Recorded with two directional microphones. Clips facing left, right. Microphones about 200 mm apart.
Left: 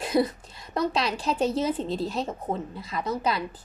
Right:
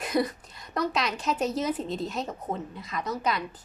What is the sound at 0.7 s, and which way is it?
A woman's voice, 30° left (ahead or behind).